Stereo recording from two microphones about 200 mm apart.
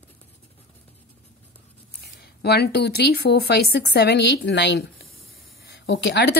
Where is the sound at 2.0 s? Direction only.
55° left (ahead or behind).